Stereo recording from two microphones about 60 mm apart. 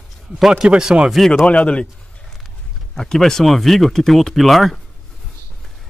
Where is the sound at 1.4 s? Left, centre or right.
Left.